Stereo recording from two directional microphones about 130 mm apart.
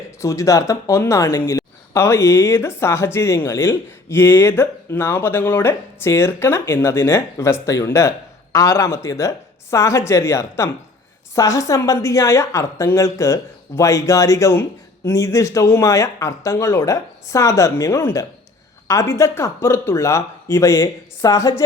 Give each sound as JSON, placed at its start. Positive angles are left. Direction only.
{"t": 0.2, "sound": "speech", "side_deg": 25}